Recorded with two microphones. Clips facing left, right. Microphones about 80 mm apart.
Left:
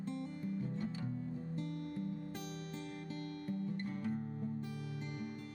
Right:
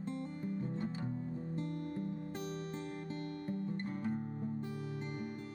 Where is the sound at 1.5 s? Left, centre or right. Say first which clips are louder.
Right 3 dB; right.